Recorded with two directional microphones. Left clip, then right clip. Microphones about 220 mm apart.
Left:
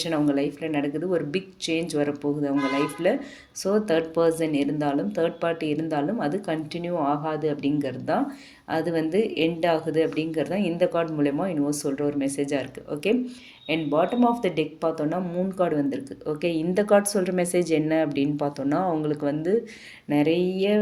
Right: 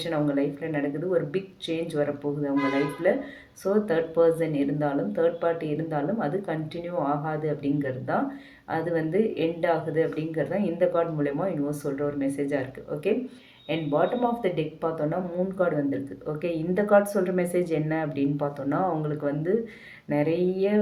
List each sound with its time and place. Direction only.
0.0 s speech: 45° left (ahead or behind)